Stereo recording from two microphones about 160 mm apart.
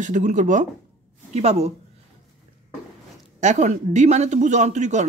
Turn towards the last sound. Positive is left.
turn(degrees=-45)  # may be behind; listen again after turning